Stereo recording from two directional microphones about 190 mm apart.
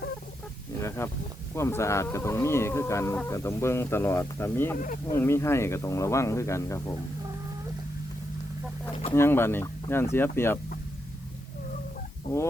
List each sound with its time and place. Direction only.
0.8 s speech: 15° left (ahead or behind)
9.1 s speech: 10° left (ahead or behind)